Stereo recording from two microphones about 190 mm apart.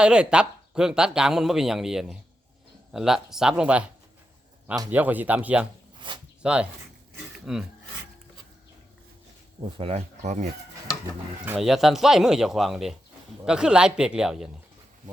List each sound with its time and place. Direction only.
0.0 s speech: 5° right (ahead or behind)
4.9 s speech: 10° right (ahead or behind)
6.0 s speech: 25° right (ahead or behind)
6.4 s speech: 5° right (ahead or behind)
7.3 s filing: 5° right (ahead or behind)
9.7 s speech: 30° right (ahead or behind)
11.4 s speech: 5° right (ahead or behind)